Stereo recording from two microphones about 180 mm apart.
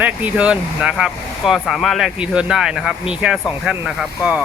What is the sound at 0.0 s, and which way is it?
Speech, 10° right (ahead or behind).